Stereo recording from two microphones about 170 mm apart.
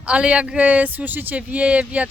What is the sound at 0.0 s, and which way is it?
Speech, 5° right (ahead or behind).